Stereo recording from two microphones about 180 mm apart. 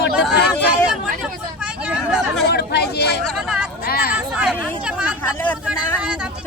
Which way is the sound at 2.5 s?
65° left (ahead or behind).